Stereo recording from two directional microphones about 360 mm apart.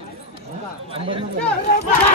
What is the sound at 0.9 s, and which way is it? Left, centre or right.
Speech, centre.